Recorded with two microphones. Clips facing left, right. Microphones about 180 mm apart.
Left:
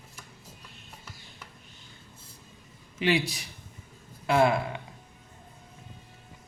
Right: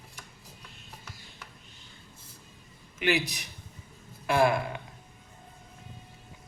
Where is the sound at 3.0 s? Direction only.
30° left (ahead or behind).